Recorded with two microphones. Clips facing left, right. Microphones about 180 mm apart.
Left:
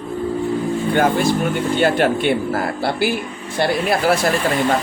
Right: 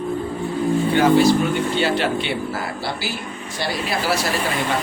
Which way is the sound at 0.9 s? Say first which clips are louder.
Right 2 dB; 50° left (ahead or behind).